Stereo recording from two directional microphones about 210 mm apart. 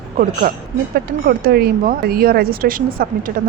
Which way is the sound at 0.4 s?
45° right (ahead or behind).